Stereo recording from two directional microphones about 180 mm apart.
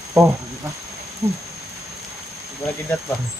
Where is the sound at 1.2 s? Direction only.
20° right (ahead or behind).